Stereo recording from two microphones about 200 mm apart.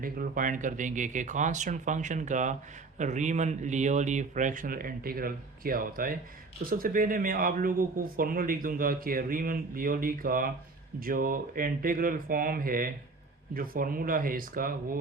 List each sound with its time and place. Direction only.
0.0 s speech: 45° right (ahead or behind)